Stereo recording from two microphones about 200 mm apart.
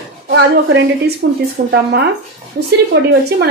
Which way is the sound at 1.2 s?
45° right (ahead or behind).